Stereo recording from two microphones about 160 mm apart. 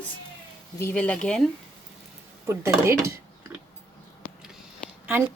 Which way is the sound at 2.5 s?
15° right (ahead or behind).